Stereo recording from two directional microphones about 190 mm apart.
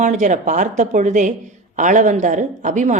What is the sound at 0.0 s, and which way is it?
A woman's voice, 40° right (ahead or behind).